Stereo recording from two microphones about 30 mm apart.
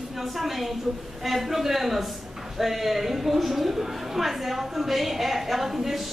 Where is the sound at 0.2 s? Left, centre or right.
Centre.